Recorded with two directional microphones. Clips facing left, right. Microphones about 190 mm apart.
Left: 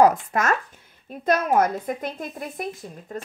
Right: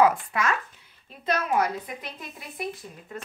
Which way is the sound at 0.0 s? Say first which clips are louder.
Left 4 dB; 45° left (ahead or behind).